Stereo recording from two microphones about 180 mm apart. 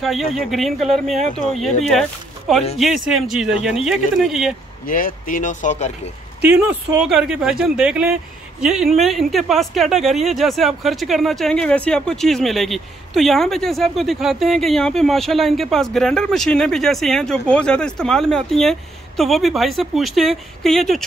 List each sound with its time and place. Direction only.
0.0 s speech: centre (ahead or behind)
4.8 s speech: 50° left (ahead or behind)
6.4 s speech: 5° right (ahead or behind)